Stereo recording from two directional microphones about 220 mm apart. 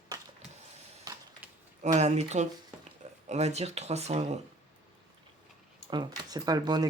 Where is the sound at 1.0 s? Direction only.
15° right (ahead or behind).